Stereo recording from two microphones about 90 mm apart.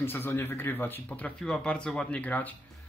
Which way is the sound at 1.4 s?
10° left (ahead or behind).